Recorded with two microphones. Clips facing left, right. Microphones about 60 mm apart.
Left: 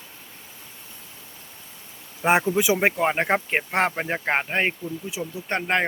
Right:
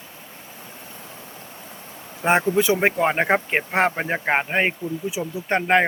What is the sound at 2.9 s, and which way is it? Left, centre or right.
Speech, centre.